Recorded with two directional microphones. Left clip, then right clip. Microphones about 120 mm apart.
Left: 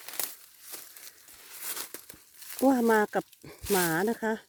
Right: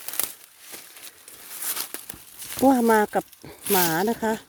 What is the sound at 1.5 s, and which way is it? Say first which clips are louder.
Crumpling: right 7 dB; 65° right (ahead or behind).